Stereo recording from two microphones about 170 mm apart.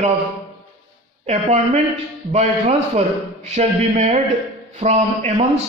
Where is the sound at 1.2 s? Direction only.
40° right (ahead or behind).